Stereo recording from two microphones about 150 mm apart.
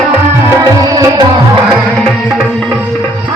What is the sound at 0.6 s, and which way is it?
Music, 25° right (ahead or behind).